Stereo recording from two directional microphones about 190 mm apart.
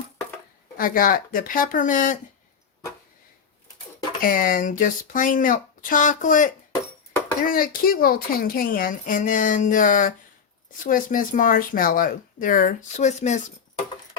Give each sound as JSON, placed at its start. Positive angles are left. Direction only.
{"t": 0.8, "sound": "a woman's voice", "side_deg": 45}
{"t": 4.2, "sound": "a woman's voice", "side_deg": 45}